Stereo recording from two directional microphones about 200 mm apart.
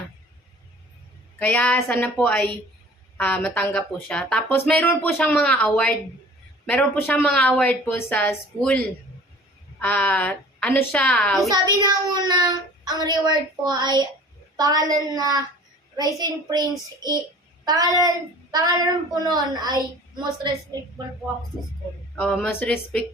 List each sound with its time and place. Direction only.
1.4 s speech: 5° left (ahead or behind)
9.8 s speech: 10° left (ahead or behind)
11.4 s speech: 20° right (ahead or behind)
19.1 s speech: 20° right (ahead or behind)
22.1 s speech: 10° left (ahead or behind)